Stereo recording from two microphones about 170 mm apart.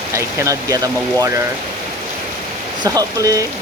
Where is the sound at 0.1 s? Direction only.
15° right (ahead or behind).